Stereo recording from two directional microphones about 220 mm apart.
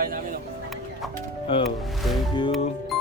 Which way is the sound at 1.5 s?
25° left (ahead or behind).